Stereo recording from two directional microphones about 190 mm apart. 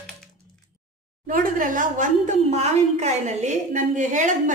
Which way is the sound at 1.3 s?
45° right (ahead or behind).